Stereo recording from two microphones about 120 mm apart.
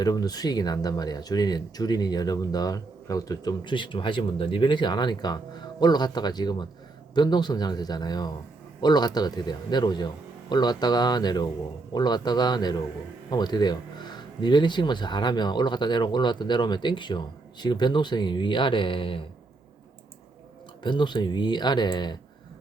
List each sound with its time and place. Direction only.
0.0 s speech: 35° left (ahead or behind)
20.8 s speech: 40° left (ahead or behind)